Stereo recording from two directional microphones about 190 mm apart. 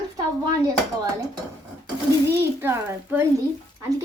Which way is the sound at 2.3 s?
15° right (ahead or behind).